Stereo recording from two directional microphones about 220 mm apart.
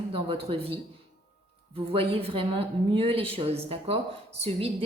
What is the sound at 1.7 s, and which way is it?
A woman's voice, 25° right (ahead or behind).